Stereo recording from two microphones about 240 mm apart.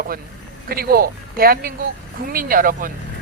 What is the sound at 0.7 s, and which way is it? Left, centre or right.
Speech, right.